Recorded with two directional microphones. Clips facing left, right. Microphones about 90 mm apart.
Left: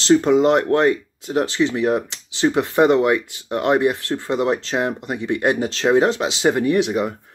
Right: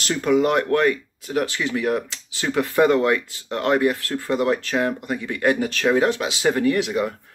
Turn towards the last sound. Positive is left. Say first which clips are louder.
# left 2 dB
turn(degrees=20)  # may be behind; listen again after turning